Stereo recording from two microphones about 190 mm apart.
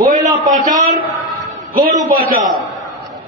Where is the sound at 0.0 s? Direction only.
40° right (ahead or behind).